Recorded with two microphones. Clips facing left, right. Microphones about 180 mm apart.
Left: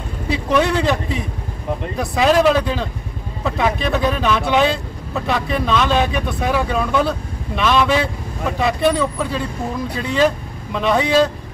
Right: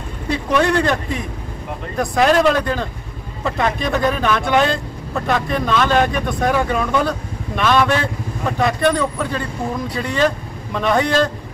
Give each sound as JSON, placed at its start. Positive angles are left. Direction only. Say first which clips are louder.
{"t": 0.3, "sound": "speech", "louder": "even", "side_deg": 5}
{"t": 2.0, "sound": "speech", "louder": "right 1 dB", "side_deg": 5}